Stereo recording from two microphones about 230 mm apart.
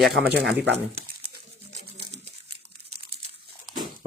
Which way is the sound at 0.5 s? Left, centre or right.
Right.